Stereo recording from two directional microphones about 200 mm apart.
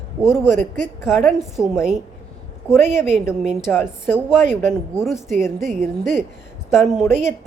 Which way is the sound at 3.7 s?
5° right (ahead or behind).